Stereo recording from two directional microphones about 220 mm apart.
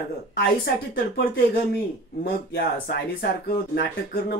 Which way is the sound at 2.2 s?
45° left (ahead or behind).